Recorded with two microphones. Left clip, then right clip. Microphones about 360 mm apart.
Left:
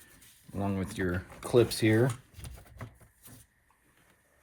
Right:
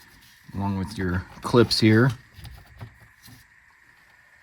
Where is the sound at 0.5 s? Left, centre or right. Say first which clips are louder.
Right 3 dB; centre.